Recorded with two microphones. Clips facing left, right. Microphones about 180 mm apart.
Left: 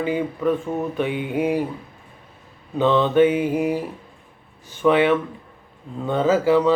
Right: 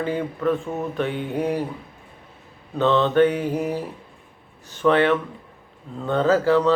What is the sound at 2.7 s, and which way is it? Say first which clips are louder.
Mantra: left 1 dB; 10° left (ahead or behind).